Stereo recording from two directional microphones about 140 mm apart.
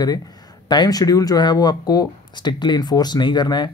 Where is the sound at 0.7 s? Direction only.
30° left (ahead or behind).